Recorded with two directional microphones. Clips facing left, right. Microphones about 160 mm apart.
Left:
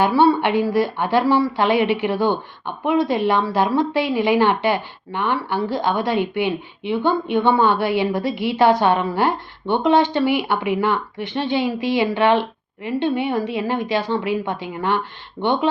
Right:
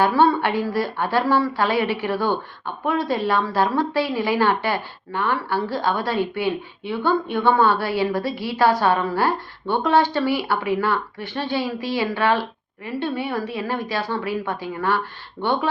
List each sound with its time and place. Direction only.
0.0 s a woman's voice: 10° left (ahead or behind)